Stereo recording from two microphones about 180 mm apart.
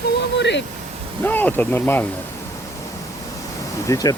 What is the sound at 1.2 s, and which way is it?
Speech, 10° left (ahead or behind).